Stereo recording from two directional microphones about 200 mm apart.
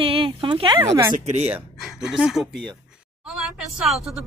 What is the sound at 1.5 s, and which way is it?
Speech, centre (ahead or behind).